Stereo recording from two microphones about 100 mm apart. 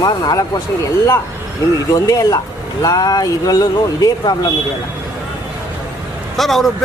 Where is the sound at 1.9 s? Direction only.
35° left (ahead or behind).